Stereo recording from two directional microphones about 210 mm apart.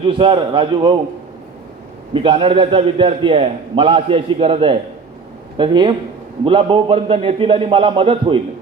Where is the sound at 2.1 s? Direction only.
25° right (ahead or behind).